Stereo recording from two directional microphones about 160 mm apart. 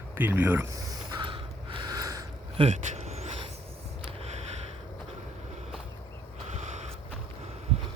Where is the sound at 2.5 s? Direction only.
40° right (ahead or behind).